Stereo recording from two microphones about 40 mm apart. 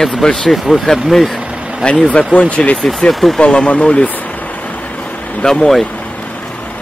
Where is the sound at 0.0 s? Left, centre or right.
Centre.